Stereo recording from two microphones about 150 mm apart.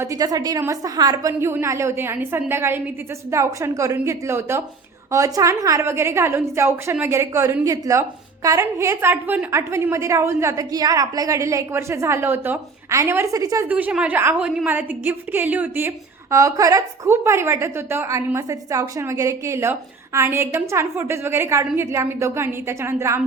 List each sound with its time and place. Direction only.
0.0 s a woman's voice: 20° right (ahead or behind)
1.3 s a woman's voice: 15° right (ahead or behind)
13.7 s a woman's voice: 10° right (ahead or behind)